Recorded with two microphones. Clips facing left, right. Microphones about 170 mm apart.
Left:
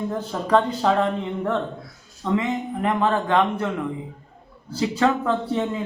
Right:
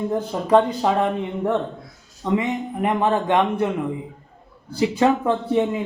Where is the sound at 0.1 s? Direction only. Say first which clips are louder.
Right 3 dB; 15° right (ahead or behind).